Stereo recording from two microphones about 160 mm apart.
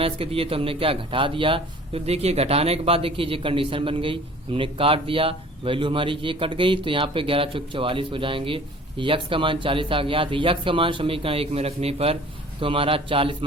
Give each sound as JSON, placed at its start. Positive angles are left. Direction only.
{"t": 0.0, "sound": "speech", "side_deg": -35}